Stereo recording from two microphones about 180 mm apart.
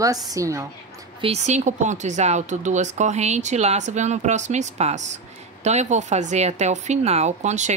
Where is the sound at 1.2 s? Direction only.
35° right (ahead or behind).